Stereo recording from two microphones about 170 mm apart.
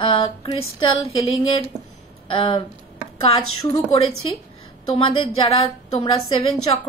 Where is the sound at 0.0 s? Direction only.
30° left (ahead or behind).